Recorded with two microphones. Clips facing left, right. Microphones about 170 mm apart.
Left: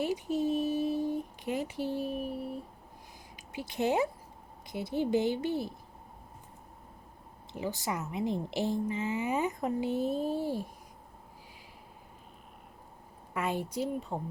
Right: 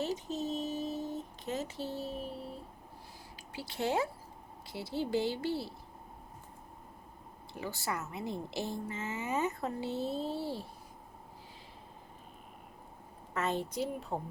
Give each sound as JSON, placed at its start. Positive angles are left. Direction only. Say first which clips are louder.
{"t": 0.0, "sound": "a woman's voice", "louder": "left 5 dB", "side_deg": 10}
{"t": 7.5, "sound": "a woman's voice", "louder": "left 3 dB", "side_deg": 15}
{"t": 13.3, "sound": "a woman's voice", "louder": "left 1 dB", "side_deg": 10}
{"t": 14.1, "sound": "speech", "louder": "left 1 dB", "side_deg": 0}